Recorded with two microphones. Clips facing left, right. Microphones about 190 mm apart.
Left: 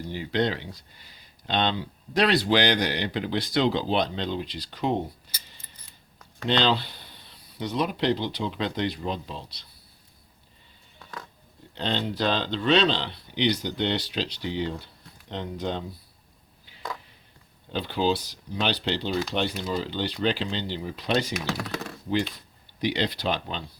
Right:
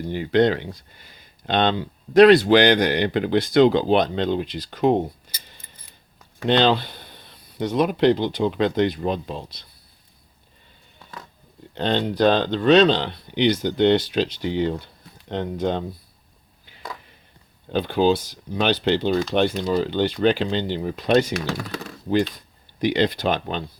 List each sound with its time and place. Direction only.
0.1 s speech: 55° right (ahead or behind)
6.4 s speech: 50° right (ahead or behind)
11.7 s speech: 50° right (ahead or behind)
17.7 s speech: 50° right (ahead or behind)
21.3 s speech: 5° left (ahead or behind)
22.8 s speech: 50° right (ahead or behind)